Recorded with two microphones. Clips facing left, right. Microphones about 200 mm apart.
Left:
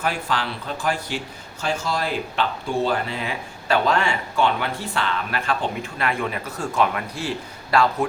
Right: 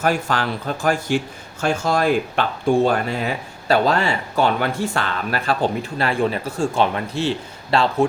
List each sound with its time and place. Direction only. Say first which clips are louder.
0.0 s speech: right 5 dB; 45° right (ahead or behind)
6.0 s a man's voice: right 5 dB; 30° right (ahead or behind)